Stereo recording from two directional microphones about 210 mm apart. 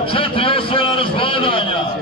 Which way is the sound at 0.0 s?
25° left (ahead or behind).